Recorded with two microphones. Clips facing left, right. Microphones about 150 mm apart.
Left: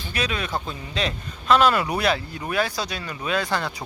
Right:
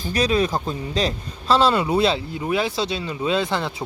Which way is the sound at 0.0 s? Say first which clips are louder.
Right 8 dB; 35° right (ahead or behind).